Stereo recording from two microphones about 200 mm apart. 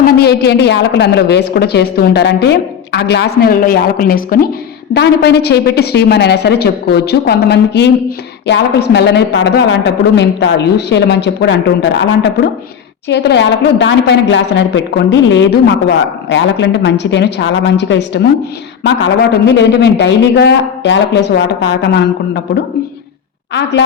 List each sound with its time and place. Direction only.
0.0 s a woman's voice: 55° left (ahead or behind)
23.6 s a woman's voice: 60° left (ahead or behind)